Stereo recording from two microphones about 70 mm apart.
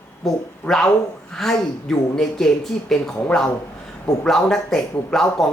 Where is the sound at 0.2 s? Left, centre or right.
Centre.